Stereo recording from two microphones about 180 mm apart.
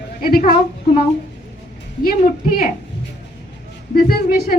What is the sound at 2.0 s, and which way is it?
Speech, 55° left (ahead or behind).